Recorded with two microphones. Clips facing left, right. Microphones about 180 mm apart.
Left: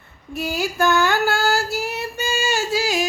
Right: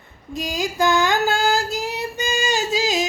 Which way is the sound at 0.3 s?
15° right (ahead or behind).